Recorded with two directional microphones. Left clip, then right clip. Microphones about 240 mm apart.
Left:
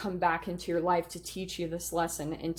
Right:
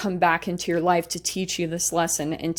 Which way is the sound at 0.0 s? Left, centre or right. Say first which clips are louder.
Right 8 dB; right.